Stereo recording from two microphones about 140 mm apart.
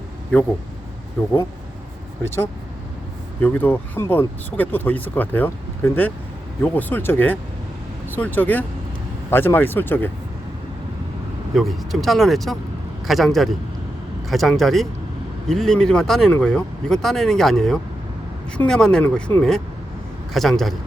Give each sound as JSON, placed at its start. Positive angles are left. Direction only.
{"t": 2.2, "sound": "speech", "side_deg": 15}
{"t": 11.5, "sound": "speech", "side_deg": 0}